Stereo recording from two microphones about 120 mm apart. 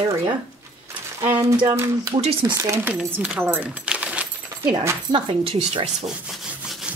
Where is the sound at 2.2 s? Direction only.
50° right (ahead or behind).